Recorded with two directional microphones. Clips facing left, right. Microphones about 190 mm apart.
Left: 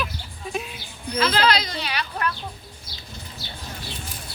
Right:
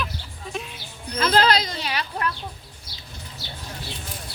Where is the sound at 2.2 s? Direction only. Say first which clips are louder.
Left 1 dB; 30° right (ahead or behind).